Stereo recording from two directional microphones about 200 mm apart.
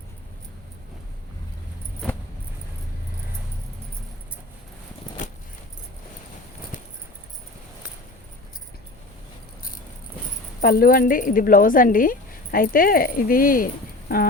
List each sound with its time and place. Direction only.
10.6 s a woman's voice: 45° left (ahead or behind)